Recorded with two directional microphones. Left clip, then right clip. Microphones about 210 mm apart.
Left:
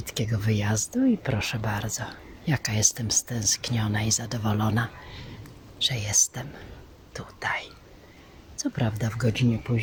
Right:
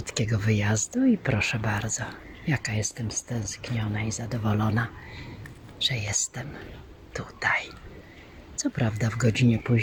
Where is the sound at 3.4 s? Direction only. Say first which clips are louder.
Left 10 dB; 75° left (ahead or behind).